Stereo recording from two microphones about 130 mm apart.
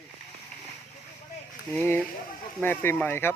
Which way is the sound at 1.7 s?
15° left (ahead or behind).